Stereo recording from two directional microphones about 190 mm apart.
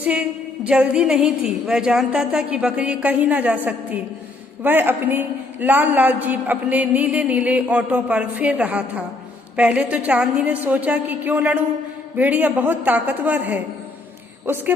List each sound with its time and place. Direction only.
0.0 s a woman's voice: 5° right (ahead or behind)